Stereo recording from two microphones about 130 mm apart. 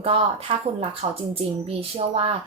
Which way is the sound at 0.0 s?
50° right (ahead or behind).